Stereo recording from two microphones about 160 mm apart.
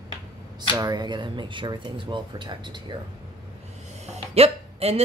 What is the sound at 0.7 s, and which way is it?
Speech, 25° right (ahead or behind).